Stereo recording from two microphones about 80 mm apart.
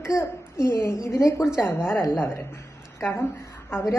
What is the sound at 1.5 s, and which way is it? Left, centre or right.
A woman's voice, left.